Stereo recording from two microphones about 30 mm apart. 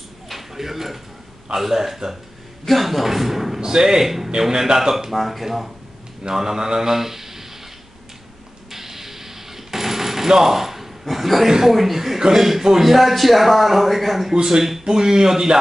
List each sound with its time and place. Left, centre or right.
0.3 s a sound: centre
1.5 s a man's voice: centre
2.6 s a man's voice: centre
3.6 s speech: right
4.0 s a man's voice: centre
5.1 s a man's voice: centre
6.3 s speech: centre
8.7 s a sound: centre
11.4 s a man's voice: centre
14.3 s speech: right